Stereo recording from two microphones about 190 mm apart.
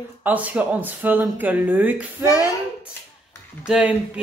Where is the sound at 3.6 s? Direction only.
5° right (ahead or behind).